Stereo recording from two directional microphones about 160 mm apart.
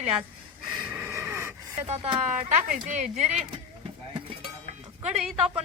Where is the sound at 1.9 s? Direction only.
30° right (ahead or behind).